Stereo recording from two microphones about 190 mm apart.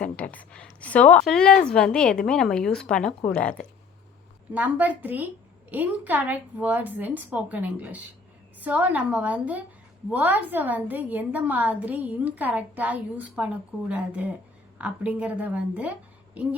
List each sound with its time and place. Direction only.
0.0 s a woman's voice: 5° left (ahead or behind)
4.5 s a woman's voice: 10° right (ahead or behind)